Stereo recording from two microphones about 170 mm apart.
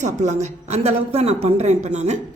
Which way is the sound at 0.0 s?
45° right (ahead or behind).